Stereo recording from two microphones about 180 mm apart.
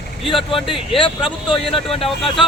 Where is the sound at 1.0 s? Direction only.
25° left (ahead or behind).